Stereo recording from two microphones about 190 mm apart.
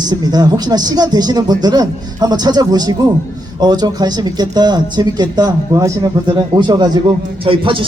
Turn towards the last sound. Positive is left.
turn(degrees=-25)  # may be behind; listen again after turning